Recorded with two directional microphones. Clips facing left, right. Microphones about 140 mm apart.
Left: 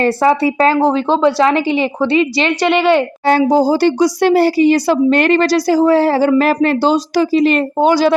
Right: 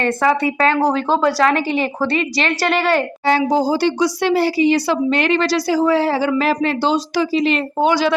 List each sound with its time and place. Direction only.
0.0 s speech: 30° left (ahead or behind)
2.7 s a woman's voice: centre (ahead or behind)
3.2 s speech: 45° left (ahead or behind)